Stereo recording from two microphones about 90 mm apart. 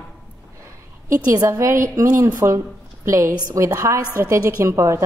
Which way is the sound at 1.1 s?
40° right (ahead or behind).